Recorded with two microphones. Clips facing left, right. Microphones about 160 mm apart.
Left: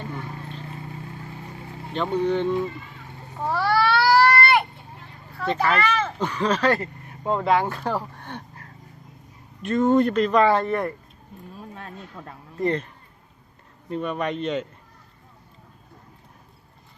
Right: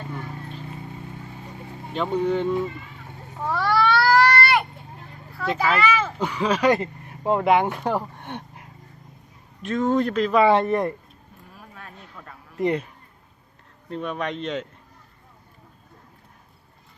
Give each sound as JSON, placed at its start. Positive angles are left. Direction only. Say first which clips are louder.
{"t": 1.9, "sound": "speech", "louder": "even", "side_deg": -10}
{"t": 3.5, "sound": "baby cry", "louder": "even", "side_deg": 5}
{"t": 5.4, "sound": "speech", "louder": "even", "side_deg": 0}
{"t": 9.6, "sound": "speech", "louder": "left 3 dB", "side_deg": 0}
{"t": 10.5, "sound": "speech", "louder": "right 2 dB", "side_deg": -20}
{"t": 11.5, "sound": "a sound", "louder": "left 5 dB", "side_deg": 25}
{"t": 12.5, "sound": "speech", "louder": "right 1 dB", "side_deg": -15}
{"t": 13.9, "sound": "speech", "louder": "left 2 dB", "side_deg": 0}